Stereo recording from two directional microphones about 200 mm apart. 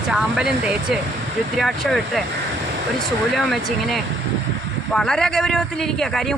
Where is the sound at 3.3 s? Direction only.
Centre (ahead or behind).